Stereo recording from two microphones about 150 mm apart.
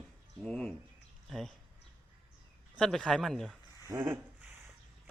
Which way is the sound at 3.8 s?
20° right (ahead or behind).